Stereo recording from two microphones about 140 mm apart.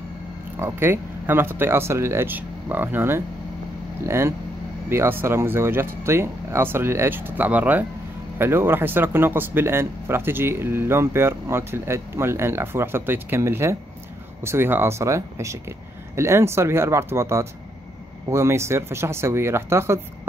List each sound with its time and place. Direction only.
0.6 s speech: 15° right (ahead or behind)